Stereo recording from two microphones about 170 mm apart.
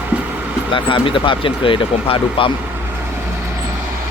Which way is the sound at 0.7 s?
30° left (ahead or behind).